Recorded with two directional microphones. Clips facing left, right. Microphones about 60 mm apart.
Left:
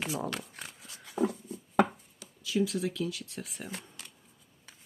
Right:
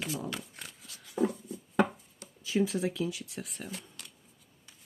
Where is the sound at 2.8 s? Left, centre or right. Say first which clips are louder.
Right 1 dB; centre.